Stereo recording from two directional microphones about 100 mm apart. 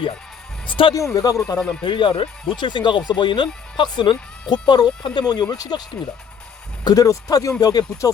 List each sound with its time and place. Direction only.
0.7 s speech: 55° left (ahead or behind)
0.9 s speech: 35° left (ahead or behind)
1.5 s speech: 5° left (ahead or behind)
1.8 s speech: 50° left (ahead or behind)
6.8 s speech: 35° left (ahead or behind)